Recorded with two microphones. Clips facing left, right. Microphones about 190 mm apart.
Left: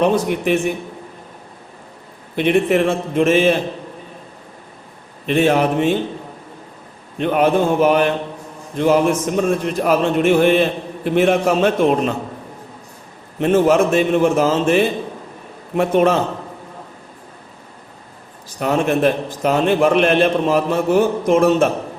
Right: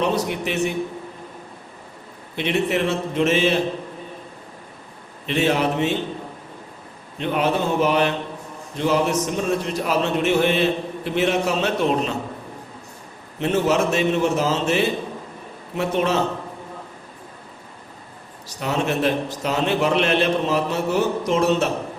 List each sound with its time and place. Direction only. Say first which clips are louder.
0.0 s a man's voice: left 6 dB; 50° left (ahead or behind)
2.3 s a man's voice: left 6 dB; 50° left (ahead or behind)
5.2 s a man's voice: left 5 dB; 50° left (ahead or behind)
7.2 s a man's voice: left 6 dB; 50° left (ahead or behind)
13.4 s a man's voice: left 6 dB; 50° left (ahead or behind)
18.4 s a man's voice: left 5 dB; 50° left (ahead or behind)